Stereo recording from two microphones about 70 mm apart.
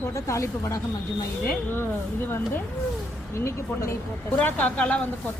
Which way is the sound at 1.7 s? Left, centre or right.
Left.